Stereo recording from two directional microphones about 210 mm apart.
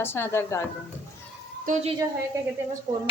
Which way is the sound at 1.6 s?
30° right (ahead or behind).